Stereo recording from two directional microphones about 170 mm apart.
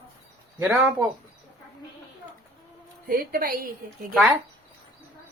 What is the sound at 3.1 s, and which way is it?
Speech, 60° right (ahead or behind).